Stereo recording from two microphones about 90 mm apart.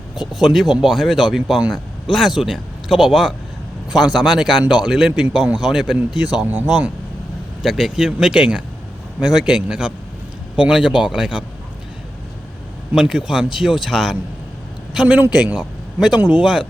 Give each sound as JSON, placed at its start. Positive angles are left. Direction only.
{"t": 0.2, "sound": "speech", "side_deg": 0}
{"t": 7.6, "sound": "a man's voice", "side_deg": 0}
{"t": 12.9, "sound": "speech", "side_deg": -5}
{"t": 15.0, "sound": "a man's voice", "side_deg": -15}
{"t": 16.2, "sound": "a man's voice", "side_deg": -15}